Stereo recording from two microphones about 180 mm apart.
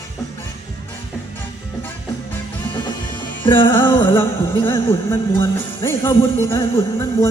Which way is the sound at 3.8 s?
15° left (ahead or behind).